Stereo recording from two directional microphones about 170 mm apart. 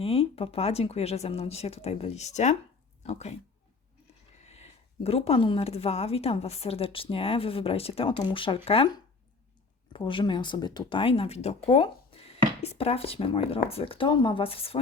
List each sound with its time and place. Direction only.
0.0 s speech: 35° left (ahead or behind)
4.4 s speech: 40° left (ahead or behind)
9.9 s speech: 30° left (ahead or behind)